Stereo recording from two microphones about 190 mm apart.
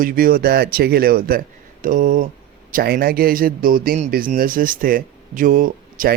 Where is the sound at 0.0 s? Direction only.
50° right (ahead or behind).